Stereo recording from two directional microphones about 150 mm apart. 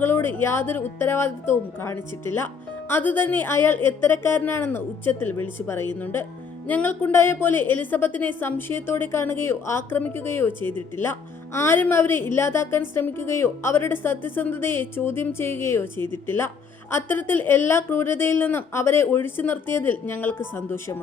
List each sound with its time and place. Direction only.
0.0 s a woman's voice: 15° left (ahead or behind)